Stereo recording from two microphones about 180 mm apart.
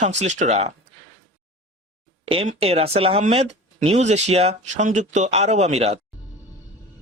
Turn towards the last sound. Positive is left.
turn(degrees=-35)  # may be behind; listen again after turning